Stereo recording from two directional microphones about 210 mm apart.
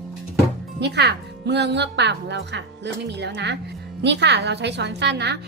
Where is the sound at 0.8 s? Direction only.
50° right (ahead or behind).